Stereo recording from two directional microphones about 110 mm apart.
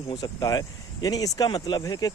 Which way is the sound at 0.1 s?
35° left (ahead or behind).